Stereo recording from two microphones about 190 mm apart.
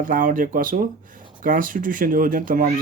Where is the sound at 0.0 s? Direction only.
45° right (ahead or behind).